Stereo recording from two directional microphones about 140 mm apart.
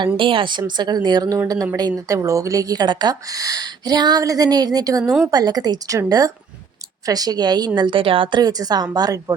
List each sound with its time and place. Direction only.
0.0 s a woman's voice: 40° right (ahead or behind)